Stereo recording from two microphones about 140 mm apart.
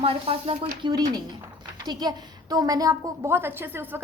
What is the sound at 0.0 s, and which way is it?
Speech, 45° right (ahead or behind).